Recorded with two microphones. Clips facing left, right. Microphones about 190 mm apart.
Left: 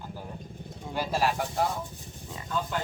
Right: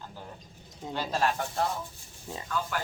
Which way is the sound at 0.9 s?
10° left (ahead or behind).